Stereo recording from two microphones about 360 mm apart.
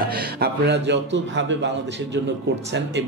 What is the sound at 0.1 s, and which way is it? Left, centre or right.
Speech, right.